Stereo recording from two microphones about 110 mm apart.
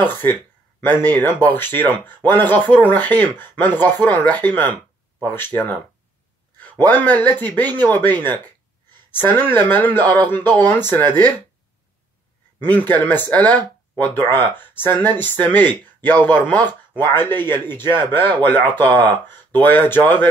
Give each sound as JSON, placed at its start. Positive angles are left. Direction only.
{"t": 0.0, "sound": "speech", "side_deg": 15}
{"t": 12.6, "sound": "a man's voice", "side_deg": 15}